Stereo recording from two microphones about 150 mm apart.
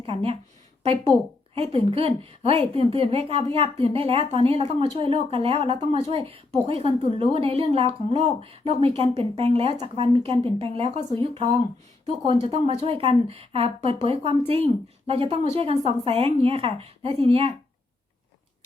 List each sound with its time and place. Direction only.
0.0 s a woman's voice: 40° right (ahead or behind)